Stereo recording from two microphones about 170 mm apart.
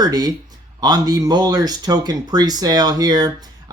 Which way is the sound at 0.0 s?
25° right (ahead or behind).